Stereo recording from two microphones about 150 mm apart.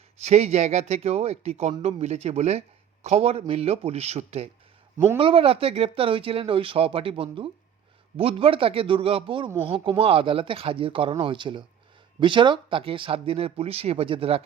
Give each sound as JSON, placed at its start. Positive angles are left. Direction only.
{"t": 0.2, "sound": "speech", "side_deg": -45}